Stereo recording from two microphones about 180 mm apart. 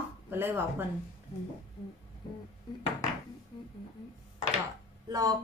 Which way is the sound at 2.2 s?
25° left (ahead or behind).